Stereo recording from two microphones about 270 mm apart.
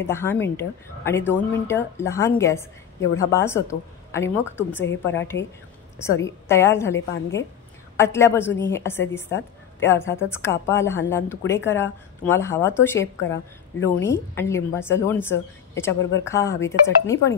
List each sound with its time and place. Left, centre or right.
0.0 s a woman's voice: centre
4.8 s a woman's voice: left
6.2 s a woman's voice: centre
15.9 s a woman's voice: left
16.3 s a woman's voice: centre